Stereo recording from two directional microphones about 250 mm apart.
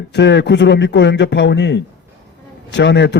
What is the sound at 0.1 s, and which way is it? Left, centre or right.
A man's voice, left.